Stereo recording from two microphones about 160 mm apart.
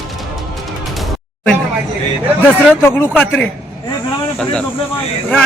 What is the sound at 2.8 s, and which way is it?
Speech, 15° left (ahead or behind).